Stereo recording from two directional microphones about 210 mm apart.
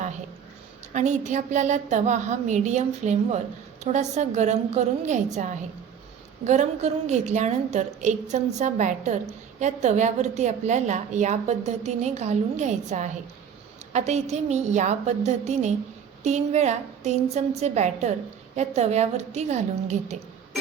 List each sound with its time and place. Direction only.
0.9 s a woman's voice: 35° right (ahead or behind)